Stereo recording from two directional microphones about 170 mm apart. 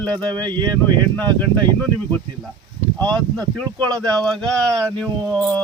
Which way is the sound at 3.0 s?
25° right (ahead or behind).